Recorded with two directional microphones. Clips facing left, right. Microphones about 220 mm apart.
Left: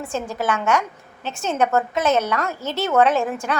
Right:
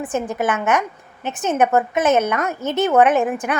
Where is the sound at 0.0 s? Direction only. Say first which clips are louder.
Right 3 dB; 20° right (ahead or behind).